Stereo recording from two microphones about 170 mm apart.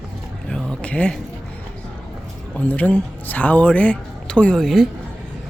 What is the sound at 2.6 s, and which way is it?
Speech, 10° left (ahead or behind).